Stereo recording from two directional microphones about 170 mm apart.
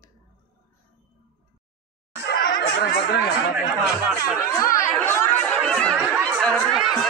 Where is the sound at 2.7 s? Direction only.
75° left (ahead or behind).